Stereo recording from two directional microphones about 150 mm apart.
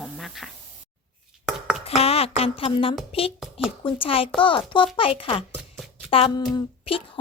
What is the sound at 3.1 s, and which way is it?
A woman's voice, 40° left (ahead or behind).